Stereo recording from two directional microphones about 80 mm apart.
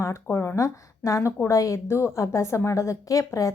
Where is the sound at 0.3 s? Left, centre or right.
Left.